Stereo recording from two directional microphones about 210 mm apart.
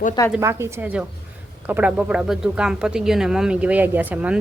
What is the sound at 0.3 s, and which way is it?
A woman's voice, 10° right (ahead or behind).